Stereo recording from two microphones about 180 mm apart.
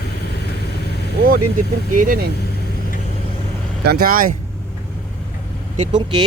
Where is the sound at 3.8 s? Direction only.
60° right (ahead or behind).